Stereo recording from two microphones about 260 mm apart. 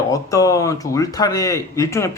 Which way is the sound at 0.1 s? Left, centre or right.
Centre.